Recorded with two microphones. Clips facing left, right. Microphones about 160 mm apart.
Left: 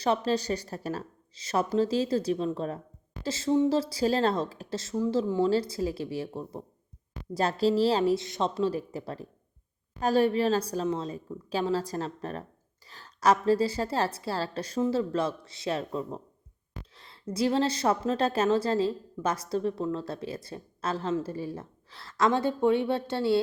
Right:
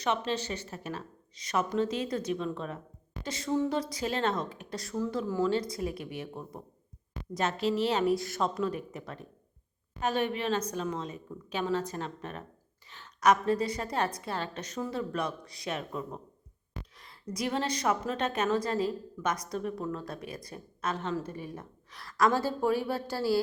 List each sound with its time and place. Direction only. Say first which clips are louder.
0.0 s a woman's voice: left 4 dB; 35° left (ahead or behind); by 5.4 s 20° left (ahead or behind)
5.4 s a woman's voice: left 3 dB; 30° left (ahead or behind)